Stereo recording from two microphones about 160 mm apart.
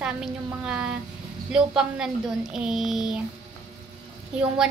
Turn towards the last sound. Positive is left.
turn(degrees=-5)  # may be behind; listen again after turning